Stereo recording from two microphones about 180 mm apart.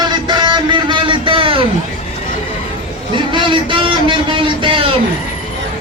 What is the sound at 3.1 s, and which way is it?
A man's voice, 25° right (ahead or behind).